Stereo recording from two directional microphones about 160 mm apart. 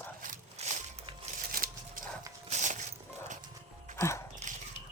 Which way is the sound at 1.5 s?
60° right (ahead or behind).